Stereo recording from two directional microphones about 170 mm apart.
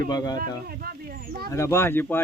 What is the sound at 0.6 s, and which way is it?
Speech, 60° right (ahead or behind).